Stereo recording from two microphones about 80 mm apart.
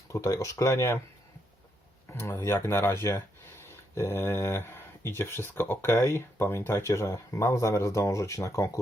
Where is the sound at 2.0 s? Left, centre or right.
Left.